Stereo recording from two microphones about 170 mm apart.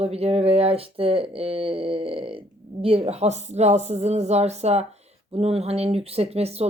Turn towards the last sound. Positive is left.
turn(degrees=-35)  # may be behind; listen again after turning